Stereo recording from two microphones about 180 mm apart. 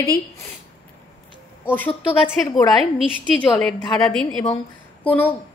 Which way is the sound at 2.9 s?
5° left (ahead or behind).